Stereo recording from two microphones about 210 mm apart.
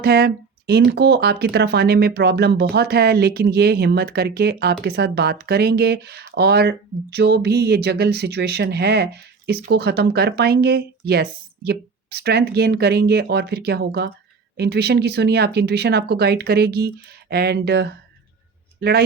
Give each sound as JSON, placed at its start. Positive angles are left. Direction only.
{"t": 0.0, "sound": "speech", "side_deg": -50}